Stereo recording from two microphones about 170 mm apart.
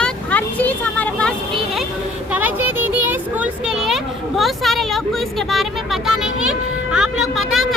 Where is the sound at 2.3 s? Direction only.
10° right (ahead or behind).